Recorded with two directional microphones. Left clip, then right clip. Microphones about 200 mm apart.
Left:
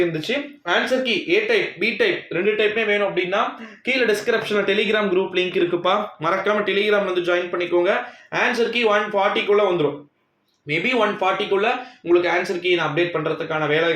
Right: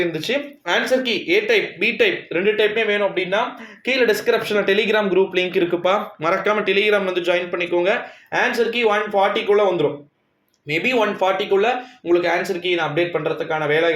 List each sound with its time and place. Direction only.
0.1 s speech: 35° right (ahead or behind)